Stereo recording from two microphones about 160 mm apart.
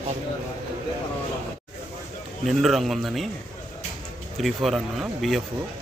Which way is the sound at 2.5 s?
Centre (ahead or behind).